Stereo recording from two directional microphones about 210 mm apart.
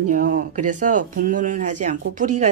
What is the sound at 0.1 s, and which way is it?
Speech, 40° right (ahead or behind).